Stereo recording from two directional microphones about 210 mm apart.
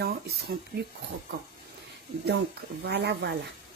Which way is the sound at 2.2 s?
55° right (ahead or behind).